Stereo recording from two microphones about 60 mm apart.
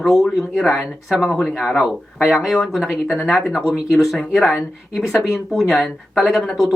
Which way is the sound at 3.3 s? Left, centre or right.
Centre.